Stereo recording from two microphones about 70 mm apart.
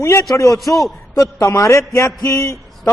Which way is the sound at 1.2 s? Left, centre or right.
Left.